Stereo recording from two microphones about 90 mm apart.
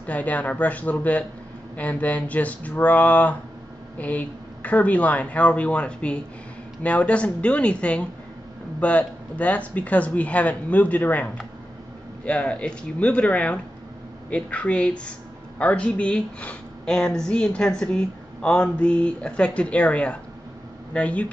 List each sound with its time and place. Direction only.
0.0 s a woman's voice: 15° left (ahead or behind)
12.3 s a woman's voice: 10° left (ahead or behind)